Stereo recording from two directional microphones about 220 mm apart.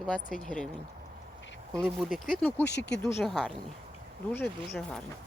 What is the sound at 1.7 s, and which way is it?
Speech, centre (ahead or behind).